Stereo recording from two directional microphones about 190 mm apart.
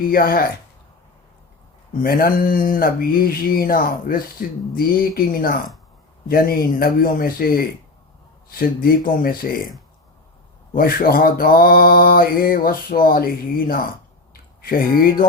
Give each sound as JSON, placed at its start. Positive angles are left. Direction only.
{"t": 0.1, "sound": "speech", "side_deg": 50}
{"t": 2.0, "sound": "speech", "side_deg": 50}
{"t": 10.8, "sound": "speech", "side_deg": 50}